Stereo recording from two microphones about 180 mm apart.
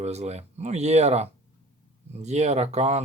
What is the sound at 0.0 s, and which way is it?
Speech, 40° right (ahead or behind).